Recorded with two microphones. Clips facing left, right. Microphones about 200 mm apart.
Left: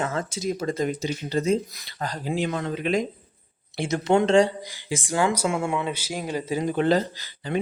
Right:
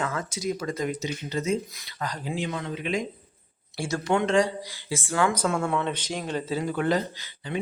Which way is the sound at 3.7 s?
20° left (ahead or behind).